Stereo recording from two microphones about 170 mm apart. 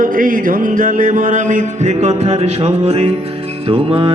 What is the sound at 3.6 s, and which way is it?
Music, 30° right (ahead or behind).